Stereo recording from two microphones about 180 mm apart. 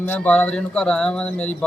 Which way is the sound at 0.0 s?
10° left (ahead or behind).